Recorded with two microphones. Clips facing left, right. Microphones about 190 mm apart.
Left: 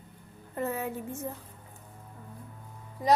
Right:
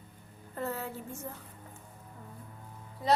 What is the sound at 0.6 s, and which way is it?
Speech, 15° left (ahead or behind).